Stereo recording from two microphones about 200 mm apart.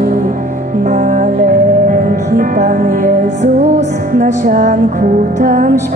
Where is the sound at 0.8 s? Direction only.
40° right (ahead or behind).